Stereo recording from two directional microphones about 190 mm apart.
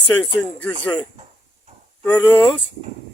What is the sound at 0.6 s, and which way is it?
Speech, 10° left (ahead or behind).